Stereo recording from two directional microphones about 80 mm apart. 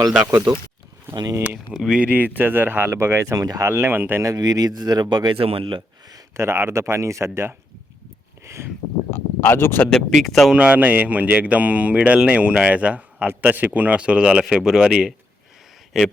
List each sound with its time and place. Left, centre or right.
0.3 s speech: right
1.7 s speech: centre; by 3.3 s right
3.3 s speech: right
3.7 s speech: right
4.2 s speech: right
6.3 s speech: right
9.0 s speech: left
9.9 s speech: centre
10.5 s speech: centre
15.9 s speech: centre